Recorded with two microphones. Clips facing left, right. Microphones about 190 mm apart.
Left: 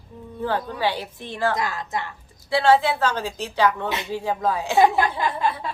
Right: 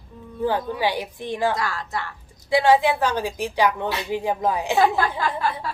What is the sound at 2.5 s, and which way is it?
Speech, 15° right (ahead or behind).